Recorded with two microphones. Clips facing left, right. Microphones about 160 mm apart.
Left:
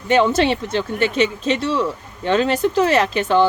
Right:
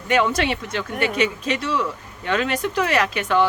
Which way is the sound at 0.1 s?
30° left (ahead or behind).